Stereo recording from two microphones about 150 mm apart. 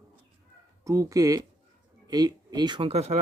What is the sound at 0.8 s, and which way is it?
Speech, 20° right (ahead or behind).